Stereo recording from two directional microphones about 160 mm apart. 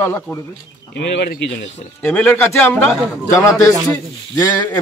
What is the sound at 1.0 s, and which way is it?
Speech, 85° left.